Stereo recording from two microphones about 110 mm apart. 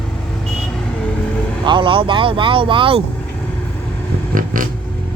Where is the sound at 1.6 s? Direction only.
50° right (ahead or behind).